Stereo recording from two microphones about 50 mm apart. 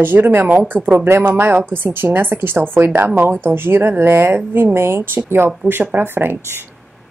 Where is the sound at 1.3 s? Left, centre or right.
Right.